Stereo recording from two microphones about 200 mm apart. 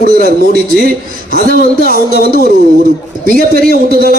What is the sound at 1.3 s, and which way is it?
Speech, 45° right (ahead or behind).